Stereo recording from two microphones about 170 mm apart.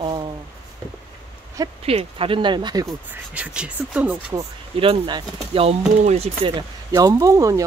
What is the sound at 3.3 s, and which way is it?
Speech, 5° right (ahead or behind).